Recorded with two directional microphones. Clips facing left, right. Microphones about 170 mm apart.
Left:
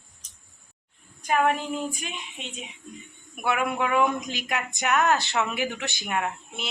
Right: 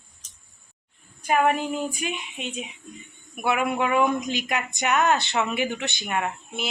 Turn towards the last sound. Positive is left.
turn(degrees=0)  # may be behind; listen again after turning